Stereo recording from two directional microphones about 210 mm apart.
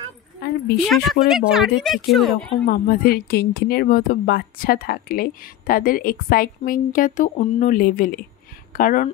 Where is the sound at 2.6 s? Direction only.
45° left (ahead or behind).